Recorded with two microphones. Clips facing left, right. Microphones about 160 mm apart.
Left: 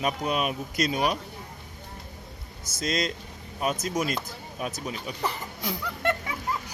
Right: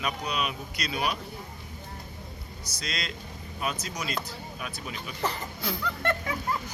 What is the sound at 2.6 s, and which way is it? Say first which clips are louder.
Speech: left 9 dB; 50° left (ahead or behind).